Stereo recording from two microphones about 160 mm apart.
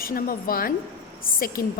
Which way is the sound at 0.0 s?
65° left (ahead or behind).